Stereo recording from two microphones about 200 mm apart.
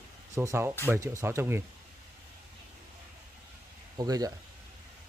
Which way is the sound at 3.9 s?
20° right (ahead or behind).